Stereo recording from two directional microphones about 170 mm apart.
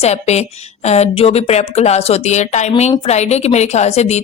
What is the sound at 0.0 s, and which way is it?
A woman's voice, 40° left (ahead or behind).